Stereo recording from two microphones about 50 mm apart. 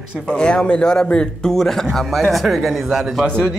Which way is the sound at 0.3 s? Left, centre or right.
Centre.